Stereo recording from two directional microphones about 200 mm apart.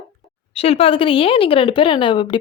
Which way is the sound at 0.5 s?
30° left (ahead or behind).